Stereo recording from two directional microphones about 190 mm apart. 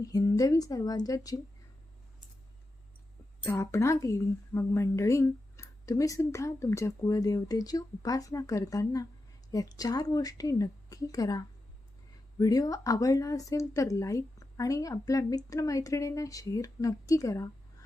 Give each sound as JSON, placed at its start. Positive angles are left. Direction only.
{"t": 0.0, "sound": "a woman's voice", "side_deg": 20}
{"t": 3.4, "sound": "a woman's voice", "side_deg": 15}